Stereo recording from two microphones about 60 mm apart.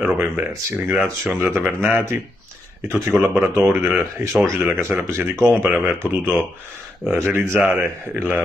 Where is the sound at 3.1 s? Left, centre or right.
Centre.